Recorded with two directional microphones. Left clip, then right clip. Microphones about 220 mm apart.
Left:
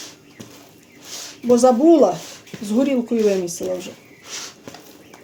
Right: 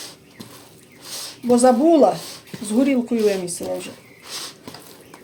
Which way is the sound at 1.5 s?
25° left (ahead or behind).